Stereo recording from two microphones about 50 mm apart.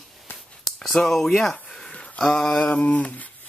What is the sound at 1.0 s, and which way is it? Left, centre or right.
Speech, centre.